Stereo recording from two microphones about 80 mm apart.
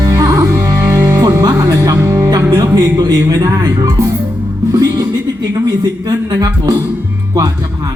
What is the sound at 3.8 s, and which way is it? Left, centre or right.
Speech, right.